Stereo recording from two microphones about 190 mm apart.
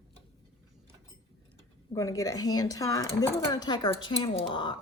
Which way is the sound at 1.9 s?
15° left (ahead or behind).